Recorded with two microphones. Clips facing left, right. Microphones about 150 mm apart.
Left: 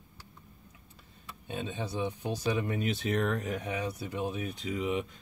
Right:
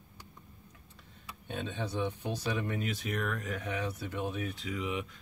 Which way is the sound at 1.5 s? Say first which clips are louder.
Left 1 dB; 10° left (ahead or behind).